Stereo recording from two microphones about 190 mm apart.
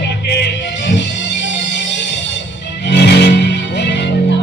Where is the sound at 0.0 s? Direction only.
65° left (ahead or behind).